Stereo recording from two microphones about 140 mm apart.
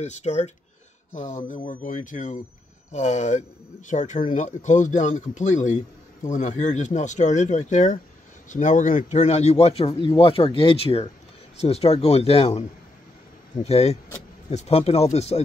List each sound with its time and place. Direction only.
0.0 s speech: 55° left (ahead or behind)
1.7 s speech: 70° left (ahead or behind); by 15.4 s 50° left (ahead or behind)